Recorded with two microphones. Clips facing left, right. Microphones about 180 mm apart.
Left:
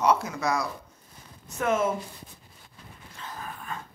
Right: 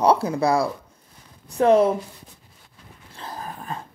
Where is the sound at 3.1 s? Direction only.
35° right (ahead or behind).